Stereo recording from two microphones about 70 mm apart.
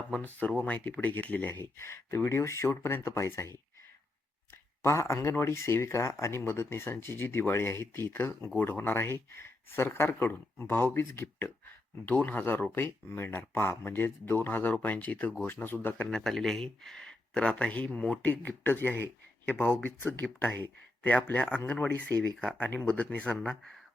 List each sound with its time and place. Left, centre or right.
0.3 s speech: centre; by 3.6 s left
4.8 s speech: left
16.0 s speech: centre